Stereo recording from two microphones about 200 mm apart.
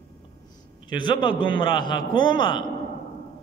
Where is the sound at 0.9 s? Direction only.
20° left (ahead or behind).